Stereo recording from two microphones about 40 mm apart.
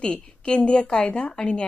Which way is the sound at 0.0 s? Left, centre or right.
Left.